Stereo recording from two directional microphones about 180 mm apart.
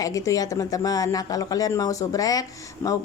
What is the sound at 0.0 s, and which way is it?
Speech, 20° left (ahead or behind).